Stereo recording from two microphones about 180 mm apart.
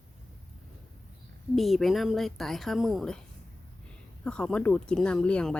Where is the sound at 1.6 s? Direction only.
Centre (ahead or behind).